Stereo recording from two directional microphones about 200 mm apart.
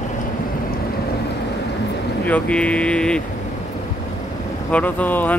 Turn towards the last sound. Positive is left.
turn(degrees=10)  # may be behind; listen again after turning